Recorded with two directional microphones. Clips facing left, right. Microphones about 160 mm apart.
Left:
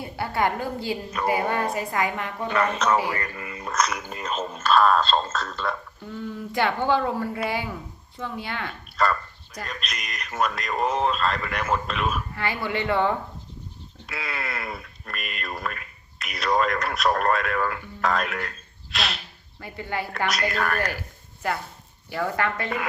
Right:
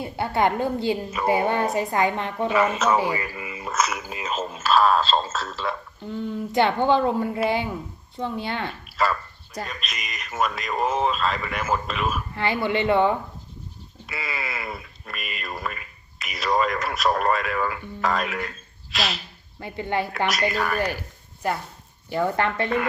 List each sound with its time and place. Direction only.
0.0 s a woman's voice: 25° right (ahead or behind)
2.5 s speech: 5° right (ahead or behind)
6.5 s a woman's voice: 25° right (ahead or behind)
9.0 s speech: 5° right (ahead or behind)
12.4 s a woman's voice: 25° right (ahead or behind)
14.1 s speech: centre (ahead or behind)
19.5 s a woman's voice: 25° right (ahead or behind)
20.1 s speech: centre (ahead or behind)
22.1 s a woman's voice: 25° right (ahead or behind)